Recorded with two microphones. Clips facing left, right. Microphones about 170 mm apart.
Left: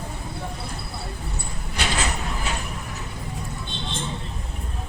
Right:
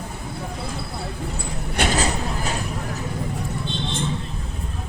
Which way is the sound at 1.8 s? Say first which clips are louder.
Right 6 dB; 55° right (ahead or behind).